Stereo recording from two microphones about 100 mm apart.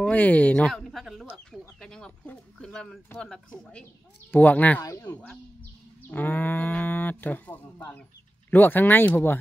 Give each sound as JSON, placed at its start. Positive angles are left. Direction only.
{"t": 0.0, "sound": "speech", "side_deg": 15}
{"t": 4.3, "sound": "speech", "side_deg": 15}
{"t": 4.8, "sound": "speech", "side_deg": 30}
{"t": 6.0, "sound": "speech", "side_deg": 20}